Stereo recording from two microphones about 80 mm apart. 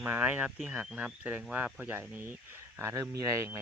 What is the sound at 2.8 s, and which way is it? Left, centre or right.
Speech, right.